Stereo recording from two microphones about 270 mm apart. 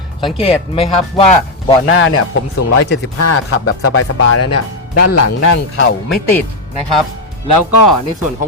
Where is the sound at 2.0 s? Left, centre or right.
Left.